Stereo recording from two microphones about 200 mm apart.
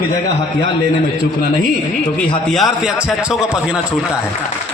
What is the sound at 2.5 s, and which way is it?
Speech, centre (ahead or behind).